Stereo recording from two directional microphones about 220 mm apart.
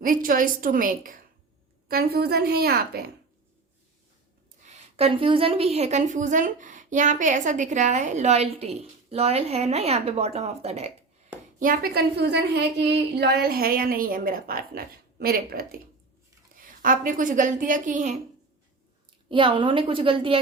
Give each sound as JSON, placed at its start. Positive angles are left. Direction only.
{"t": 0.0, "sound": "a woman's voice", "side_deg": -40}
{"t": 4.6, "sound": "a woman's voice", "side_deg": -30}
{"t": 11.6, "sound": "a woman's voice", "side_deg": -40}
{"t": 16.8, "sound": "a woman's voice", "side_deg": -40}
{"t": 19.3, "sound": "a woman's voice", "side_deg": -25}